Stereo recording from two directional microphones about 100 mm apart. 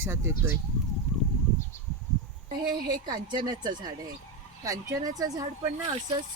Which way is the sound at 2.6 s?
45° right (ahead or behind).